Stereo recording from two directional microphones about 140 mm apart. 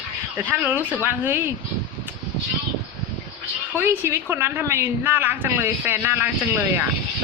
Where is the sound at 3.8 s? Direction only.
15° right (ahead or behind).